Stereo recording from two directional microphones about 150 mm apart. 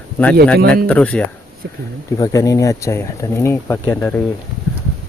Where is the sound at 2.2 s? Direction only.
25° left (ahead or behind).